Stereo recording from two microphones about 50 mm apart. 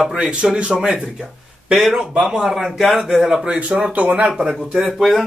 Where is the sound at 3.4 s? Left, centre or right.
Right.